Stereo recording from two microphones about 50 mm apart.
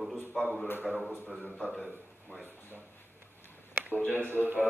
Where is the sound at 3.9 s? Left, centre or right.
Left.